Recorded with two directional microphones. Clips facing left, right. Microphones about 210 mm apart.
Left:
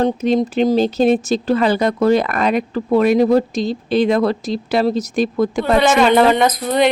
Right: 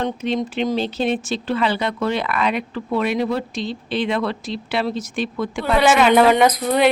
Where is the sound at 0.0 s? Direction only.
40° left (ahead or behind).